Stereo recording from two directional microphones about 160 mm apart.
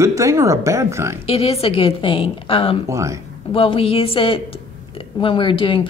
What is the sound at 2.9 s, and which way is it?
Speech, 20° right (ahead or behind).